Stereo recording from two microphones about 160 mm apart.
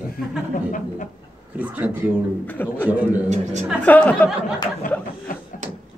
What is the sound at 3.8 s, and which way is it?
Speech, 10° left (ahead or behind).